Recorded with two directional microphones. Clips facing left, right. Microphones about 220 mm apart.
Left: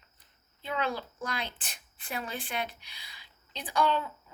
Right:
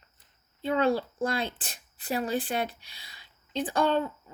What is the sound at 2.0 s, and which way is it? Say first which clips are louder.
Speech: right 9 dB; 35° right (ahead or behind).